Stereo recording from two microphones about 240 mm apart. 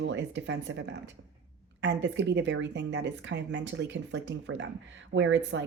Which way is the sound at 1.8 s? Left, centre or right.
Right.